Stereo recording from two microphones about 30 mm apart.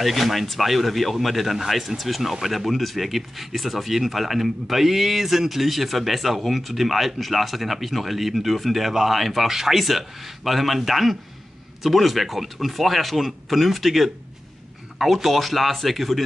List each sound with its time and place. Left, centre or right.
0.0 s speech: centre